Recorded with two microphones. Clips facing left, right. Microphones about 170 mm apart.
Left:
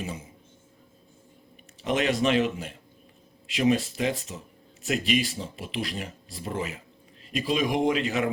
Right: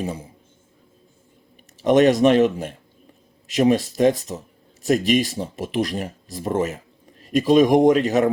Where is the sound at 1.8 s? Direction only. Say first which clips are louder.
Right 10 dB; 45° right (ahead or behind).